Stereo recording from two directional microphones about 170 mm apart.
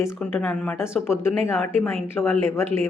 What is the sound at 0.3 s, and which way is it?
Speech, 10° left (ahead or behind).